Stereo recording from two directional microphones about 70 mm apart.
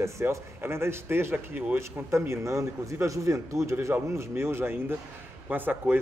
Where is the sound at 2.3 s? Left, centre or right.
Right.